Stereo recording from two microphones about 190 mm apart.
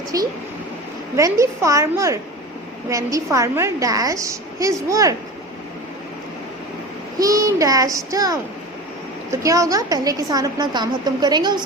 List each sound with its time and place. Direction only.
0.1 s a woman's voice: 15° right (ahead or behind)
7.2 s a woman's voice: 20° right (ahead or behind)